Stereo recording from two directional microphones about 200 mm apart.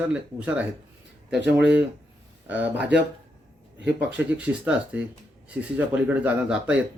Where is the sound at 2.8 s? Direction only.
60° right (ahead or behind).